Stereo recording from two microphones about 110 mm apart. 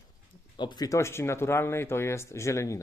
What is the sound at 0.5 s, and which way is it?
Speech, 40° left (ahead or behind).